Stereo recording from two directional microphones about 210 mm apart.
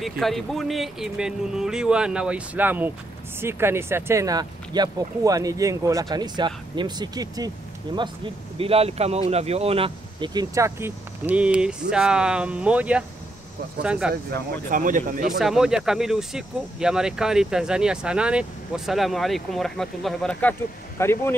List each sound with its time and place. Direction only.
0.0 s speech: centre (ahead or behind)
14.3 s speech: 40° right (ahead or behind)
15.3 s speech: centre (ahead or behind)